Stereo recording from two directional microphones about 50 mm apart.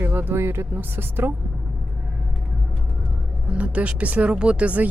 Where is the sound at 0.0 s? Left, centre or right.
Right.